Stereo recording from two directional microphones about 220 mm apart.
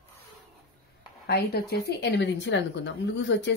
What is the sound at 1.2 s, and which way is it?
A woman's voice, 45° left (ahead or behind).